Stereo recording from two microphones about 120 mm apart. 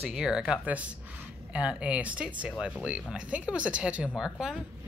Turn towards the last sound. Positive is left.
turn(degrees=-5)  # may be behind; listen again after turning